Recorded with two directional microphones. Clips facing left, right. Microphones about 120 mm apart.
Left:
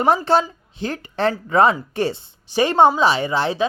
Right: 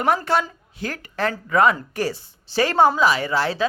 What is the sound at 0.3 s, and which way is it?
Speech, 25° left (ahead or behind).